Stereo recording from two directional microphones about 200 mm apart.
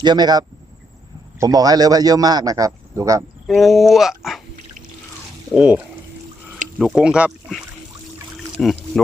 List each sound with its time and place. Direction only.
0.0 s a man's voice: 20° right (ahead or behind)
3.4 s speech: centre (ahead or behind)
5.5 s a man's voice: 5° right (ahead or behind)